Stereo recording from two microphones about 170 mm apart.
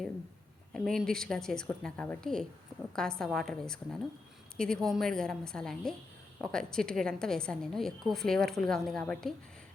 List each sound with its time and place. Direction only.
0.7 s a woman's voice: centre (ahead or behind)